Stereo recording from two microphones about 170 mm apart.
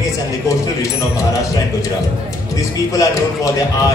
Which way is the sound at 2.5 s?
20° left (ahead or behind).